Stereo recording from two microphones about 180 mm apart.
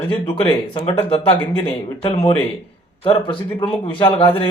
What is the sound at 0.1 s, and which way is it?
Speech, 30° left (ahead or behind).